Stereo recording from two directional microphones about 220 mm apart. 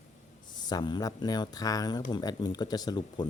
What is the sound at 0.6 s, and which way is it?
Speech, 20° left (ahead or behind).